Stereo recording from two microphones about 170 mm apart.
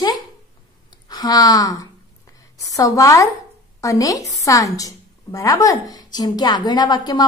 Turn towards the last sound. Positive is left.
turn(degrees=25)  # may be behind; listen again after turning